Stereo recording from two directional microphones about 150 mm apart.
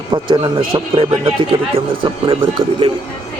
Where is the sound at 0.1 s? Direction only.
30° right (ahead or behind).